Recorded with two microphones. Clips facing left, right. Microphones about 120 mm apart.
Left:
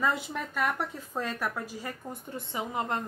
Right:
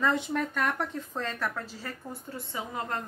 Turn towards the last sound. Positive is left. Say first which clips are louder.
# left 2 dB
turn(degrees=20)  # may be behind; listen again after turning